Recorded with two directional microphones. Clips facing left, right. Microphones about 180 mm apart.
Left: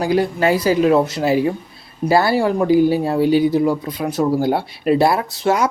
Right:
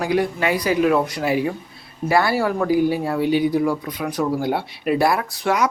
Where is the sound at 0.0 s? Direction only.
30° left (ahead or behind).